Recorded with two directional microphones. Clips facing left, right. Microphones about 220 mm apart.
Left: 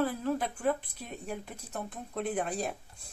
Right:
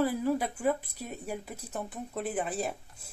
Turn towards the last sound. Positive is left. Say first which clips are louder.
# even
turn(degrees=-5)  # may be behind; listen again after turning